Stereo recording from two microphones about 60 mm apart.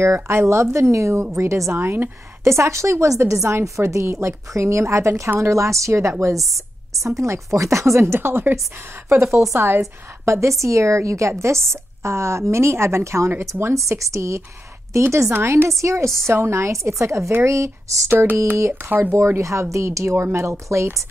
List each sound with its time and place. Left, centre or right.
0.0 s a woman's voice: right
1.7 s a woman's voice: right
9.4 s a woman's voice: right
15.3 s speech: right
15.8 s a woman's voice: right
18.1 s speech: right
19.1 s a woman's voice: right